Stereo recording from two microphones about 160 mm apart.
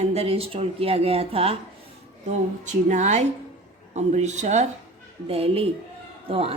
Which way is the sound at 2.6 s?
50° right (ahead or behind).